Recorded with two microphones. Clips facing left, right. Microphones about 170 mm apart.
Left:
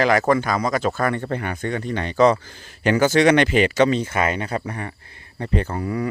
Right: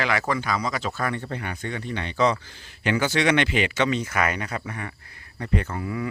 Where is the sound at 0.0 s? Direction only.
45° left (ahead or behind).